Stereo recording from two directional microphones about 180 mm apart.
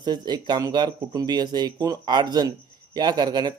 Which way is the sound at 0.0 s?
25° right (ahead or behind).